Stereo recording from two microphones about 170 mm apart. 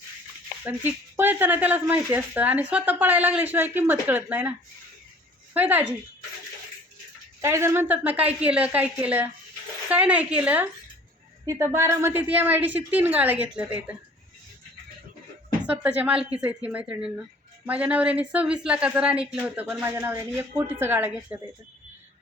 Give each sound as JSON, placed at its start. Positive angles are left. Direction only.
{"t": 0.6, "sound": "speech", "side_deg": -10}
{"t": 5.5, "sound": "speech", "side_deg": -10}
{"t": 7.4, "sound": "speech", "side_deg": -15}
{"t": 15.6, "sound": "speech", "side_deg": -10}